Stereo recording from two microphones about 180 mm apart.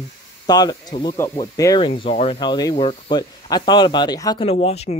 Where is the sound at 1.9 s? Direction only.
30° left (ahead or behind).